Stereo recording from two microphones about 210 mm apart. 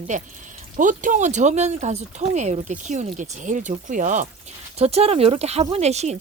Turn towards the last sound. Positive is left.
turn(degrees=-30)  # may be behind; listen again after turning